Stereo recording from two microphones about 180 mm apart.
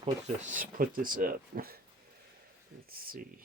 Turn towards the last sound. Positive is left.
turn(degrees=-55)  # may be behind; listen again after turning